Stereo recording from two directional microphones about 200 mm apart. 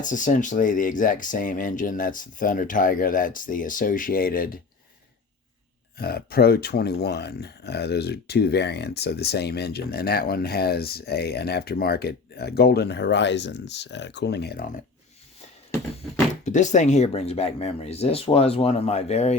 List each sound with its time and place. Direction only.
0.0 s speech: 40° left (ahead or behind)
6.0 s speech: 50° left (ahead or behind)
16.4 s speech: 35° left (ahead or behind)